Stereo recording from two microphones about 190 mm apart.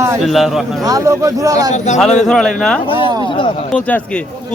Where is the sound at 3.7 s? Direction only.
5° left (ahead or behind).